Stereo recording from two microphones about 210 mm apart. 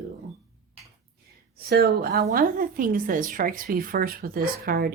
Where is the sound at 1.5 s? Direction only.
50° right (ahead or behind).